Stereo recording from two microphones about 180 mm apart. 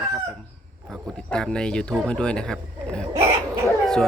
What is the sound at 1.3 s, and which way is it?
Speech, 5° left (ahead or behind).